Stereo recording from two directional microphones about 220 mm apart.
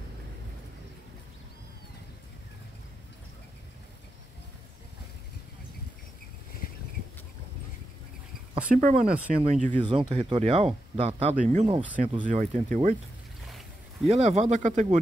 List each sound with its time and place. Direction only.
8.7 s speech: 30° right (ahead or behind)
14.0 s speech: 30° right (ahead or behind)